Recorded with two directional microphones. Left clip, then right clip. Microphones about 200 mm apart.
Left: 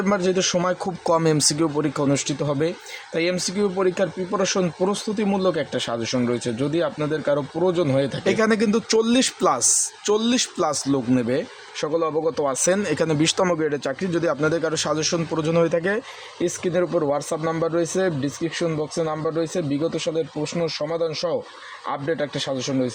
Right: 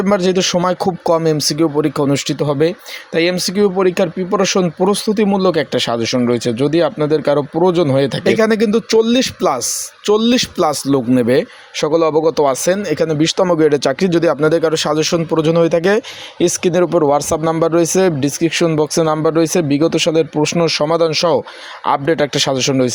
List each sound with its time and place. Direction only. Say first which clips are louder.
0.0 s speech: right 7 dB; 25° right (ahead or behind)
8.2 s speech: right 6 dB; 20° right (ahead or behind)
10.1 s speech: right 8 dB; 30° right (ahead or behind)
12.6 s speech: right 6 dB; 15° right (ahead or behind)
13.6 s a man's voice: right 11 dB; 25° right (ahead or behind)
15.5 s a man's voice: right 6 dB; 20° right (ahead or behind); by 23.0 s 35° right (ahead or behind)